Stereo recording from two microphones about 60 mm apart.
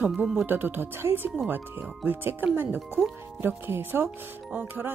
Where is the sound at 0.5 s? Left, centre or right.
Right.